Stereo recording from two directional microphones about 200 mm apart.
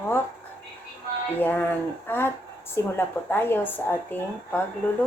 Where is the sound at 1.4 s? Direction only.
10° left (ahead or behind).